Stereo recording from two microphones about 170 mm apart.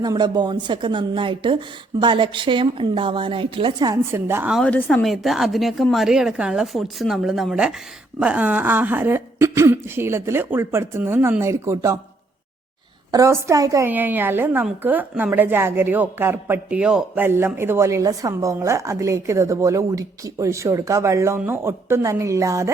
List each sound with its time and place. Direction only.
0.0 s a woman's voice: 25° right (ahead or behind)
4.5 s a woman's voice: 5° left (ahead or behind); by 11.9 s 15° right (ahead or behind)
13.1 s a woman's voice: 20° right (ahead or behind)